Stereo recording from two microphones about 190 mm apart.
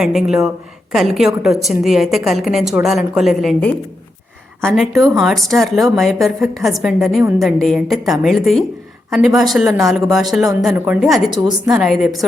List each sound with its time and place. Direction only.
0.0 s a woman's voice: centre (ahead or behind)
11.3 s a woman's voice: 15° right (ahead or behind)
11.8 s a woman's voice: centre (ahead or behind)